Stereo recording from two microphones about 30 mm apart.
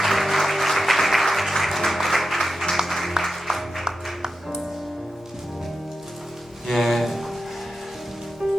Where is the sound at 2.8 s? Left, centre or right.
Centre.